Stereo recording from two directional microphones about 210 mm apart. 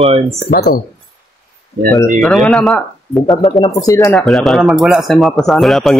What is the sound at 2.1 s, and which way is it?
Speech, centre (ahead or behind).